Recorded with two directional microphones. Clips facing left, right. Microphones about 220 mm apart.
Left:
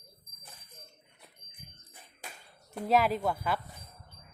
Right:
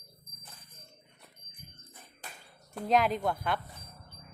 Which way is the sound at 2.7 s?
5° left (ahead or behind).